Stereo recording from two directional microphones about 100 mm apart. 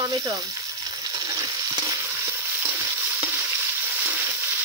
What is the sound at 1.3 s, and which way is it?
Frying, 30° right (ahead or behind).